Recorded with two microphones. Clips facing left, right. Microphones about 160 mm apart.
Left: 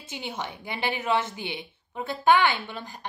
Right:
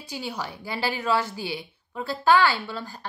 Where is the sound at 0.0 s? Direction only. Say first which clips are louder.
Right 2 dB; 20° left (ahead or behind).